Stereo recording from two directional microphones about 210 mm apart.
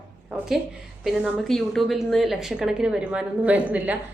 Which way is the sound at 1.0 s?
Centre (ahead or behind).